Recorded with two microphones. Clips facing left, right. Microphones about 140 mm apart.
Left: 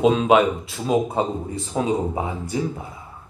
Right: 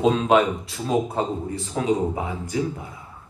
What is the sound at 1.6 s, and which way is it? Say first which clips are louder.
Speech: even; 25° left (ahead or behind).